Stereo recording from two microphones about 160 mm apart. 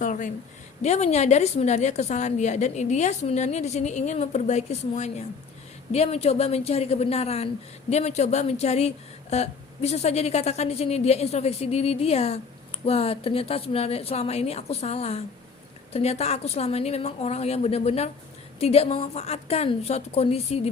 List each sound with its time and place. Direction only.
0.0 s a woman's voice: 55° left (ahead or behind)